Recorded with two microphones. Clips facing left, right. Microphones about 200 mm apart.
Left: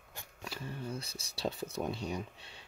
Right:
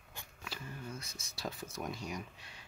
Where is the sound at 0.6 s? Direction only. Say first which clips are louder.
Left 6 dB; 30° left (ahead or behind).